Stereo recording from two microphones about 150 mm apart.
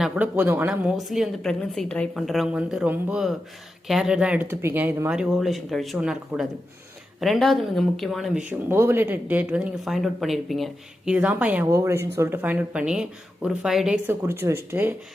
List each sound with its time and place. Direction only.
0.0 s a woman's voice: 10° right (ahead or behind)
5.1 s a woman's voice: centre (ahead or behind)
8.4 s speech: 15° right (ahead or behind)
14.1 s speech: 15° right (ahead or behind)